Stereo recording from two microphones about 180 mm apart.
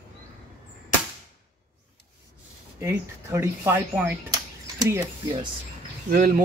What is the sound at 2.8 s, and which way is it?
Speech, 15° right (ahead or behind).